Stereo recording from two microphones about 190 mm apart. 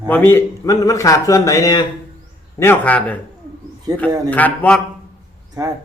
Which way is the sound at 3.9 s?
20° right (ahead or behind).